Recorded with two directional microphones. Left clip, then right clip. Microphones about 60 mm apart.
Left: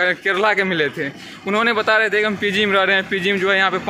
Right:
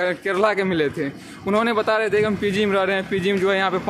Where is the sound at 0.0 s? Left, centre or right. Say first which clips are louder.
Left 3 dB; right.